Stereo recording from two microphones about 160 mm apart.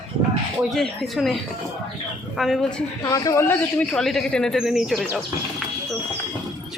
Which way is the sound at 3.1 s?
20° left (ahead or behind).